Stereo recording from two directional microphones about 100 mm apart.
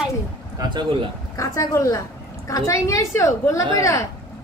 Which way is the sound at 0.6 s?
50° right (ahead or behind).